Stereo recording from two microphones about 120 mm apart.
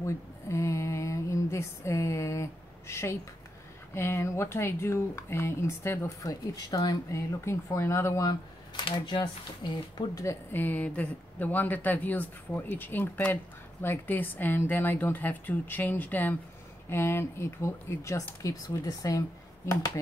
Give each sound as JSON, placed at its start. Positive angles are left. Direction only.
{"t": 0.0, "sound": "a sound", "side_deg": 25}
{"t": 3.9, "sound": "speech", "side_deg": 20}
{"t": 8.8, "sound": "speech", "side_deg": 40}
{"t": 10.5, "sound": "speech", "side_deg": 15}